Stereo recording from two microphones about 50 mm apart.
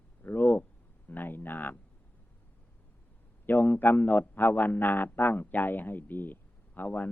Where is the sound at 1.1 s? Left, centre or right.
Left.